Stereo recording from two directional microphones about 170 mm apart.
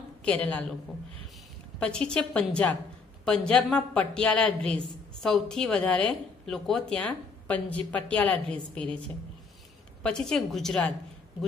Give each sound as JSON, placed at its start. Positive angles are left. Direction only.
{"t": 0.2, "sound": "a woman's voice", "side_deg": 5}
{"t": 1.8, "sound": "a woman's voice", "side_deg": 5}
{"t": 10.0, "sound": "speech", "side_deg": 5}